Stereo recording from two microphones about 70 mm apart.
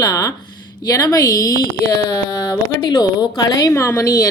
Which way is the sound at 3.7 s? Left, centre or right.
Left.